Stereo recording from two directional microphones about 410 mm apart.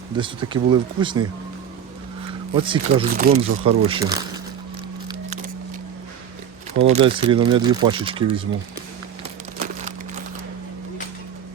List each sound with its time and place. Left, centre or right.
0.2 s speech: centre
2.6 s speech: centre
3.6 s speech: centre
5.0 s a sound: centre
6.7 s speech: centre
9.6 s crumpling: centre